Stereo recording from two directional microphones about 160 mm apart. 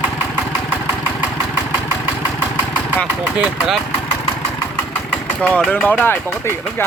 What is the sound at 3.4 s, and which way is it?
Speech, centre (ahead or behind).